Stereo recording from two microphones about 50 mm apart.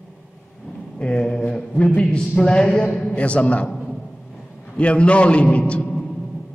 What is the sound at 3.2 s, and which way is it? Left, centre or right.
Speech, left.